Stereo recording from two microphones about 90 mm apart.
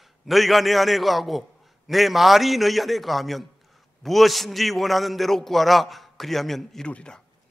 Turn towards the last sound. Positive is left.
turn(degrees=10)  # may be behind; listen again after turning